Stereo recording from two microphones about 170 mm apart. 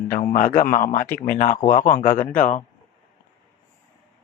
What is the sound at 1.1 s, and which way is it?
Speech, 10° left (ahead or behind).